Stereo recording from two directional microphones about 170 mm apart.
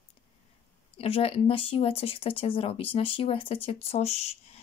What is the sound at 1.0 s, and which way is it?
Speech, 35° left (ahead or behind).